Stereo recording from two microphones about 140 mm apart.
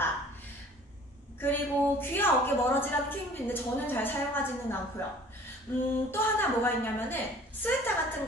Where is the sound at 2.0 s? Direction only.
15° left (ahead or behind).